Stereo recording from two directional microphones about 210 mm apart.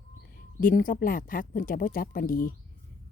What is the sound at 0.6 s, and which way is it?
A woman's voice, 40° left (ahead or behind).